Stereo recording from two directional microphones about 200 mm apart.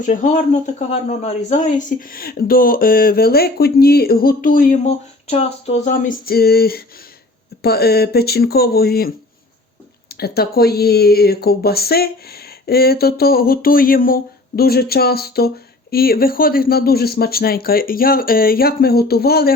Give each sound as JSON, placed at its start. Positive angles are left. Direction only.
{"t": 0.0, "sound": "speech", "side_deg": 40}